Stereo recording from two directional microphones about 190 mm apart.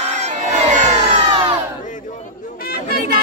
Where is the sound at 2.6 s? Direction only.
50° left (ahead or behind).